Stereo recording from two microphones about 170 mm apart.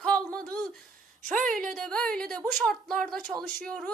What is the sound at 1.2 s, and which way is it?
Speech, 50° right (ahead or behind).